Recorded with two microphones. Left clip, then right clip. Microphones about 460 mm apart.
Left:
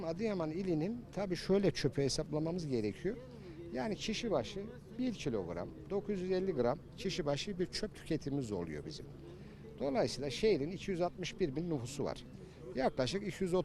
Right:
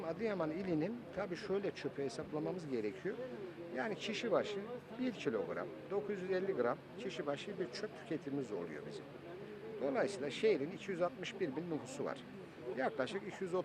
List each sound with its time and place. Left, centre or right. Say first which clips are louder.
0.0 s speech: left 1 dB; left
9.8 s a man's voice: left 2 dB; left